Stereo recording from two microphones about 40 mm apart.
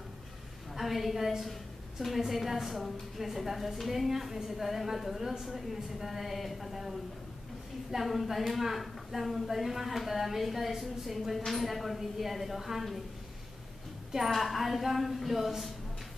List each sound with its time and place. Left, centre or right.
0.7 s a woman's voice: centre
14.1 s a woman's voice: centre